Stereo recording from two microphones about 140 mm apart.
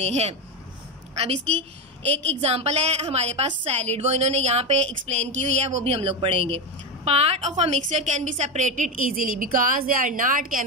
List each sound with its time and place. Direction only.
0.0 s a woman's voice: 50° right (ahead or behind); by 10.6 s 75° right (ahead or behind)